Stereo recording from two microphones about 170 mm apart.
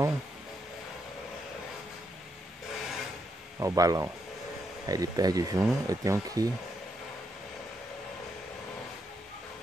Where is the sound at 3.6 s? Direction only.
20° right (ahead or behind).